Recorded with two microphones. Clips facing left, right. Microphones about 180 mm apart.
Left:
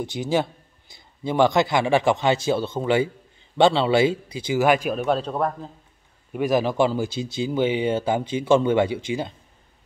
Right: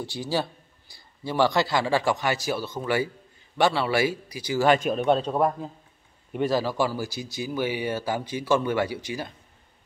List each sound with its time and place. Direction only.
0.0 s speech: 20° left (ahead or behind)
4.6 s a man's voice: 5° left (ahead or behind)
6.4 s speech: 20° left (ahead or behind)